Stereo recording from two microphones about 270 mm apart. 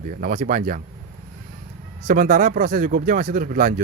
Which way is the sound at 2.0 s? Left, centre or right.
Right.